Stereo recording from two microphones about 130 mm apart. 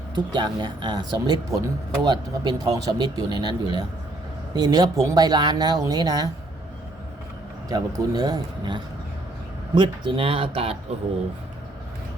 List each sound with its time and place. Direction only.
0.1 s speech: 35° right (ahead or behind)
7.7 s speech: 30° right (ahead or behind); by 10.8 s 50° right (ahead or behind)